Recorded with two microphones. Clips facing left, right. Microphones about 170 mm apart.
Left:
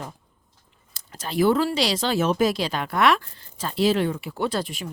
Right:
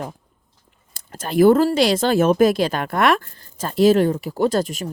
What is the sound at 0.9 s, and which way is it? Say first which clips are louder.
Speech: right 7 dB; 50° right (ahead or behind).